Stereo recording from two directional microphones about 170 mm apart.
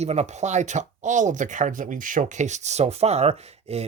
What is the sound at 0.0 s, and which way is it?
Speech, 40° right (ahead or behind).